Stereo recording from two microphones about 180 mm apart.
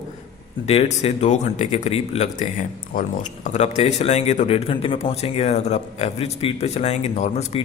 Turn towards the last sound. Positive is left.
turn(degrees=40)  # may be behind; listen again after turning